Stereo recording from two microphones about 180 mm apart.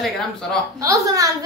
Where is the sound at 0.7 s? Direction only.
20° right (ahead or behind).